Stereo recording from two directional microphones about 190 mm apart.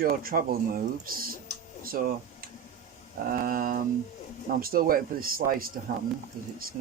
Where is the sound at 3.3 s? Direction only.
50° right (ahead or behind).